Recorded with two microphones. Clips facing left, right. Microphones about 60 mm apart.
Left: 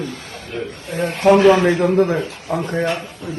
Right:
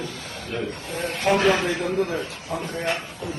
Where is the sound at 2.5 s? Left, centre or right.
Left.